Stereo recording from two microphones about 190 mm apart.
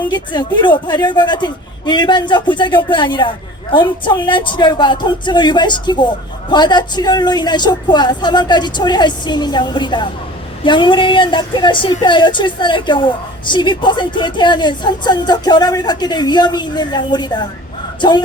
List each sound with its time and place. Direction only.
0.1 s speech: 25° left (ahead or behind)